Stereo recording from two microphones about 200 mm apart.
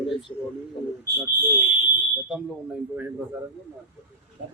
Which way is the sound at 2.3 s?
5° right (ahead or behind).